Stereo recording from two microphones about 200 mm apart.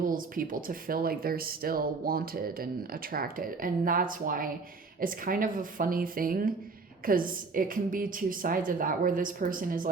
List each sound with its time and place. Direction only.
0.0 s speech: 45° right (ahead or behind)